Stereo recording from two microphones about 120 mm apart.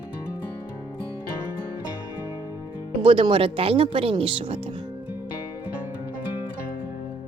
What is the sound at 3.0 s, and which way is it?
Speech, 50° right (ahead or behind).